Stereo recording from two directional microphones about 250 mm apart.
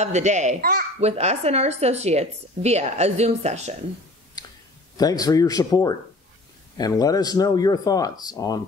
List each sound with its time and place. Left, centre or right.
0.0 s speech: right
4.9 s speech: centre